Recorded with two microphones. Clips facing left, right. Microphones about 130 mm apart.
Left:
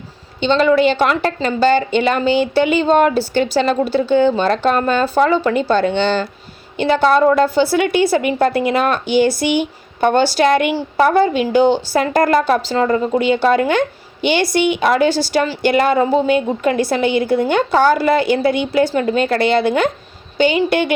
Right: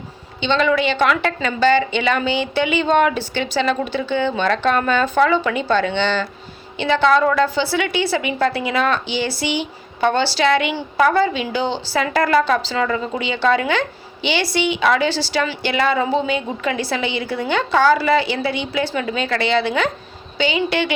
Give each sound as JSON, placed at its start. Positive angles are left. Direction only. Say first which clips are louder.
{"t": 0.3, "sound": "a woman's voice", "louder": "left 5 dB", "side_deg": 40}